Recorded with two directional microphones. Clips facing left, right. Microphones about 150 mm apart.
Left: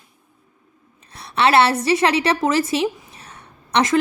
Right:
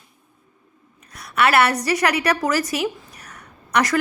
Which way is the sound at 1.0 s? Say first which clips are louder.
Left 1 dB; 30° left (ahead or behind).